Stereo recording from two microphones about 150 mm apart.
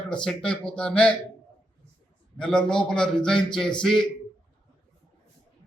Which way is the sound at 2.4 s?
5° left (ahead or behind).